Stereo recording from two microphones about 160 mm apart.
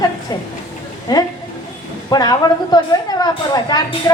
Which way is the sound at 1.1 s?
25° left (ahead or behind).